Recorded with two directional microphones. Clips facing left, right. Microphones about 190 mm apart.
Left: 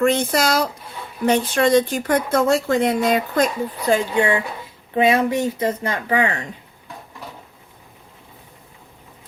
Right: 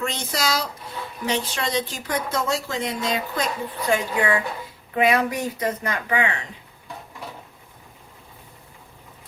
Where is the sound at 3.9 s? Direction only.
25° left (ahead or behind).